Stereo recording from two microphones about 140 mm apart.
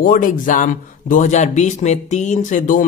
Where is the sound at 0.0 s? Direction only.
75° left (ahead or behind).